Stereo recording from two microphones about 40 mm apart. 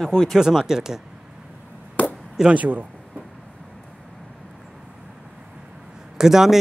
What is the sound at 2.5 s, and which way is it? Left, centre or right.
Speech, right.